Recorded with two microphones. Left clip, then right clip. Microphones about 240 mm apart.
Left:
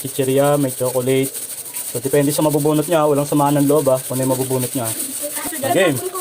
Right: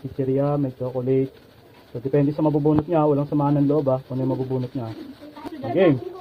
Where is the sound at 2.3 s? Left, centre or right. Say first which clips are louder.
Left 4 dB; left.